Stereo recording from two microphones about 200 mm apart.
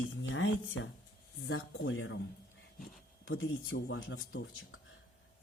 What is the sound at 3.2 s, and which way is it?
Speech, 85° left.